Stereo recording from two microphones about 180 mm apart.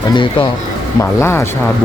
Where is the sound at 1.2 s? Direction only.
15° left (ahead or behind).